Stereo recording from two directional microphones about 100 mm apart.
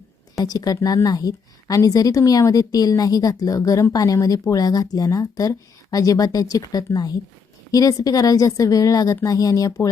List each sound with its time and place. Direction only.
0.3 s a woman's voice: 40° left (ahead or behind)